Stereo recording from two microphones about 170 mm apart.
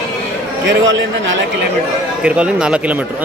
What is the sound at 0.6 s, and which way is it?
Speech, 90° right.